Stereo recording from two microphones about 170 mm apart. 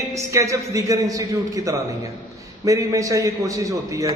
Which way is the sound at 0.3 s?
20° right (ahead or behind).